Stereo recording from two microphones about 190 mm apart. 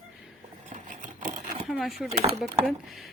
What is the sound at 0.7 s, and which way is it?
Vehicle, 40° right (ahead or behind).